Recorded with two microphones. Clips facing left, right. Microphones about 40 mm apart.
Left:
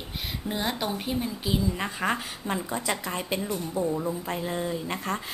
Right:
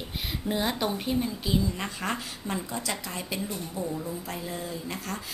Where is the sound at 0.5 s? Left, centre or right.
Centre.